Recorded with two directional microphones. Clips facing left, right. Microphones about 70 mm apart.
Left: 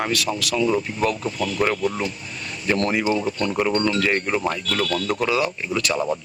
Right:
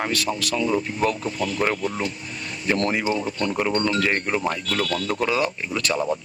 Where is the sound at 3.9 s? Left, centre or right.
Right.